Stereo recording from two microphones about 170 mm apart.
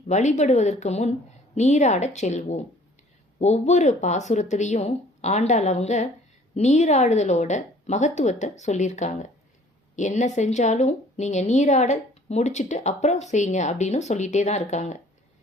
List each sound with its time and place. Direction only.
0.1 s a woman's voice: 45° left (ahead or behind)